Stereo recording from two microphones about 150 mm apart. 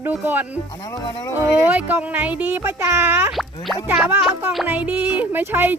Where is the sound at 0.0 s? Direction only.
10° right (ahead or behind).